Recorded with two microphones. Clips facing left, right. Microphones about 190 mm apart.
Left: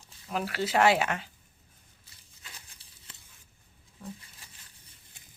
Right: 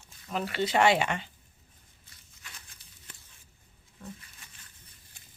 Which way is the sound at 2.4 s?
30° left (ahead or behind).